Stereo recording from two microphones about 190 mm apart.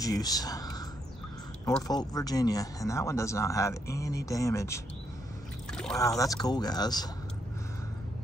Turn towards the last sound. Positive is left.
turn(degrees=20)  # may be behind; listen again after turning